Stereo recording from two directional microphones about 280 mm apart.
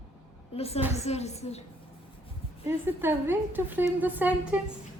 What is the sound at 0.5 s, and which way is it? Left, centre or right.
A woman's voice, left.